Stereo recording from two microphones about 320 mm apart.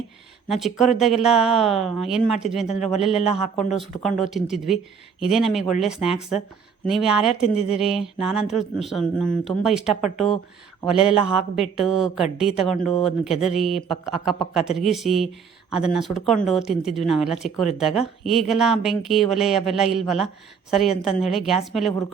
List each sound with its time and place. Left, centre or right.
0.4 s speech: centre
7.5 s speech: centre
7.8 s speech: centre